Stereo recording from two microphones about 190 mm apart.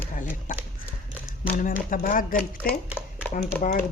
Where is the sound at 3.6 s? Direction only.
45° left (ahead or behind).